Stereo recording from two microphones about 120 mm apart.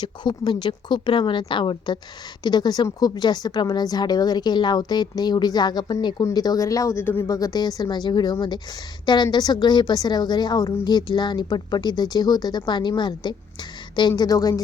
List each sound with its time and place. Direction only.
0.0 s a woman's voice: 40° left (ahead or behind)
7.0 s speech: 15° left (ahead or behind)
7.3 s a woman's voice: 30° left (ahead or behind)